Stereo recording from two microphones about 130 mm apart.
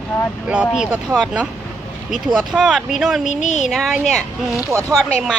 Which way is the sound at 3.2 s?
65° left (ahead or behind).